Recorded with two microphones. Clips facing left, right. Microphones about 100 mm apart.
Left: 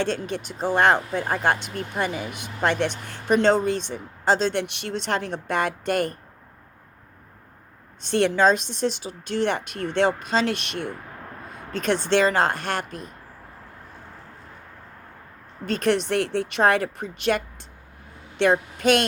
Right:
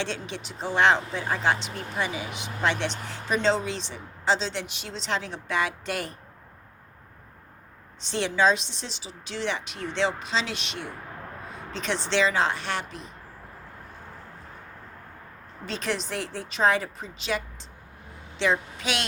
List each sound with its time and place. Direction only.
0.0 s speech: 50° left (ahead or behind)
8.0 s speech: 55° left (ahead or behind)
15.6 s speech: 55° left (ahead or behind)